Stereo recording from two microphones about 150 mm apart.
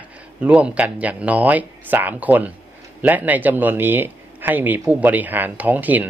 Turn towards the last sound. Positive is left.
turn(degrees=-10)  # may be behind; listen again after turning